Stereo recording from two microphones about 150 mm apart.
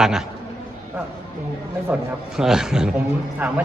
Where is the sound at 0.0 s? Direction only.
5° right (ahead or behind).